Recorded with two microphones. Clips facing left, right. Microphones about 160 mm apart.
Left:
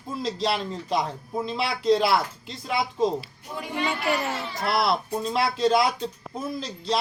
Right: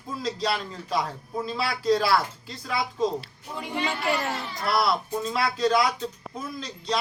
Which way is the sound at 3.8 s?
Centre (ahead or behind).